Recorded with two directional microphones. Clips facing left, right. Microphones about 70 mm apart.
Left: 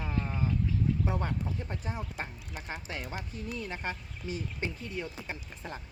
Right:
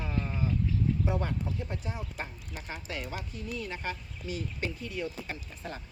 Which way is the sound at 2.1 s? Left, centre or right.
Left.